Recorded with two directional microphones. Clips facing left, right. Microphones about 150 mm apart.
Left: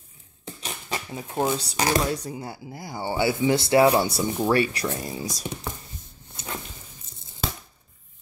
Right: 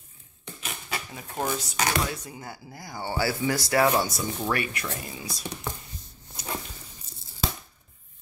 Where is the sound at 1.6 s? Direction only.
35° left (ahead or behind).